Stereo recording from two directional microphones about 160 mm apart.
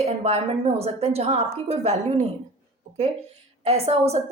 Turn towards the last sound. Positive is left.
turn(degrees=-40)  # may be behind; listen again after turning